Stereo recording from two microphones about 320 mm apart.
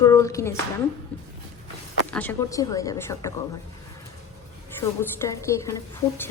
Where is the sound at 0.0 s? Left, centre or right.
Centre.